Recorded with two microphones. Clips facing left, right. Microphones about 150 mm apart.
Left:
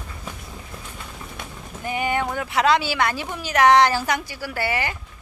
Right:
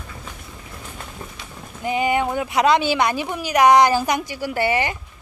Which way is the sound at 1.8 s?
20° right (ahead or behind).